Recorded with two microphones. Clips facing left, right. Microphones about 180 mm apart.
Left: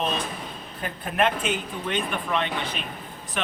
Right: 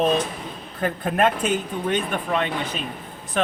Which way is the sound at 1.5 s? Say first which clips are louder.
Right 5 dB; 45° right (ahead or behind).